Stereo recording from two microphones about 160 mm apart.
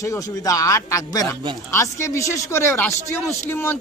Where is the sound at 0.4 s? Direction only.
20° left (ahead or behind).